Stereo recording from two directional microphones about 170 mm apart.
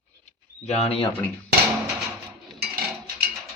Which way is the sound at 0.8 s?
35° left (ahead or behind).